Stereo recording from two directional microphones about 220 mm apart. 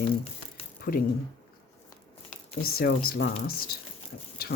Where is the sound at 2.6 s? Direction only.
40° left (ahead or behind).